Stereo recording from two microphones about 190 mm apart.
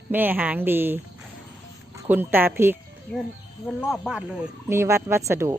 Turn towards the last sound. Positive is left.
turn(degrees=-15)  # may be behind; listen again after turning